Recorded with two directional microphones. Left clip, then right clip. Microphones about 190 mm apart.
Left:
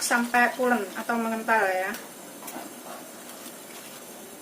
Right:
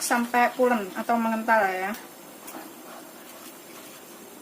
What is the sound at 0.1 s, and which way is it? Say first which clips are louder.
A woman's voice: even; 40° right (ahead or behind).